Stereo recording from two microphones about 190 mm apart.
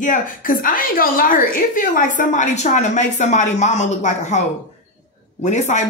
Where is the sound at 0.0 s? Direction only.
45° left (ahead or behind).